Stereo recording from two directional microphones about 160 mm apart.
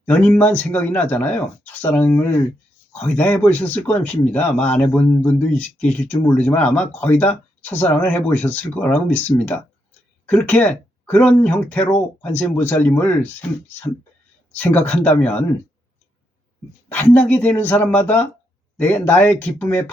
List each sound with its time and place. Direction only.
0.0 s speech: 10° left (ahead or behind)
14.5 s speech: 10° left (ahead or behind)
16.9 s speech: 10° left (ahead or behind)